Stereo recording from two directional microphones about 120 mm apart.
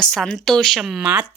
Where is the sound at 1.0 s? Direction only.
10° right (ahead or behind).